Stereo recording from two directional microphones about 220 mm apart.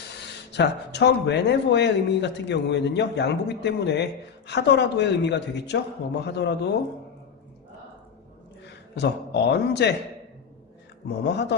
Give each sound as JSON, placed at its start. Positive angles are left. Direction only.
{"t": 0.5, "sound": "a man's voice", "side_deg": 50}
{"t": 8.9, "sound": "a man's voice", "side_deg": 50}
{"t": 11.1, "sound": "a man's voice", "side_deg": 50}